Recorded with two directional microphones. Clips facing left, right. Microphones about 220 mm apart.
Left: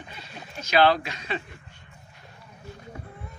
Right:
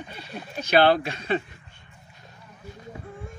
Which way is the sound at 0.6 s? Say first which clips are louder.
Right 2 dB; 55° right (ahead or behind).